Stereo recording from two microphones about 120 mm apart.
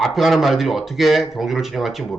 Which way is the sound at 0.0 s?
Centre (ahead or behind).